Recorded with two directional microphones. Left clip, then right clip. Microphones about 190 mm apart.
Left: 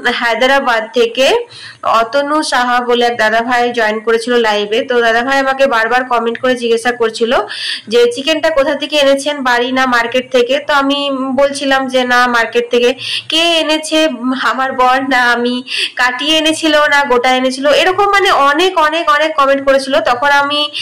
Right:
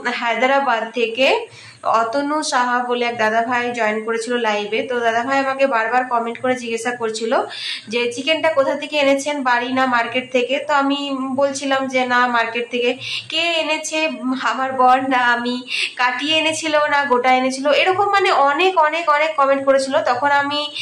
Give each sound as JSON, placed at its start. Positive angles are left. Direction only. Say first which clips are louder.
{"t": 0.0, "sound": "speech", "louder": "left 6 dB", "side_deg": 25}